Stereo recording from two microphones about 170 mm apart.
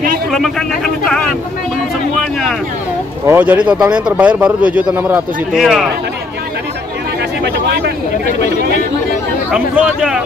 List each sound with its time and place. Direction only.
0.3 s speech: centre (ahead or behind)
3.3 s speech: 10° right (ahead or behind)
7.4 s speech: 75° right (ahead or behind)
9.5 s speech: 5° right (ahead or behind)